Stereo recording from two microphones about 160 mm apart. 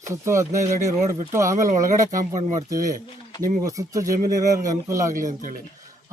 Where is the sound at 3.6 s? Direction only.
20° right (ahead or behind).